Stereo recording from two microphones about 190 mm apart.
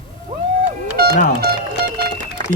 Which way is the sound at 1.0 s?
55° right (ahead or behind).